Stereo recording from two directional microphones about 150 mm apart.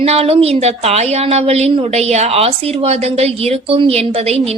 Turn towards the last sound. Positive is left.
turn(degrees=-45)  # may be behind; listen again after turning